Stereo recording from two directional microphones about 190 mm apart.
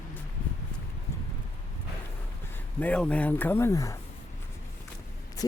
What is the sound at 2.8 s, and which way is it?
Speech, 5° left (ahead or behind).